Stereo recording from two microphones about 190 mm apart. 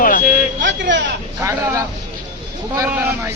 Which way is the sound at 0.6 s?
75° right (ahead or behind).